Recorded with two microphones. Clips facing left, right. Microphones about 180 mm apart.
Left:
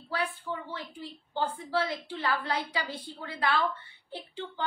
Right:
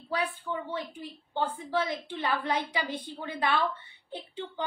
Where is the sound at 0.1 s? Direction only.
20° right (ahead or behind).